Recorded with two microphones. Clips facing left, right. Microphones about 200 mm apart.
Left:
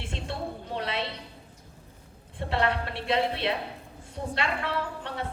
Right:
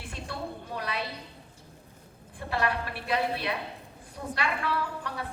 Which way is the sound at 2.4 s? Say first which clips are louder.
Left 2 dB; 25° left (ahead or behind).